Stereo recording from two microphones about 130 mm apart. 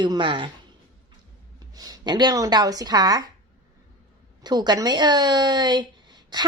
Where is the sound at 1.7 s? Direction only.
30° right (ahead or behind).